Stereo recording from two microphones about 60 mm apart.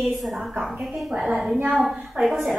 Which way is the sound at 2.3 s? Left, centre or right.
Centre.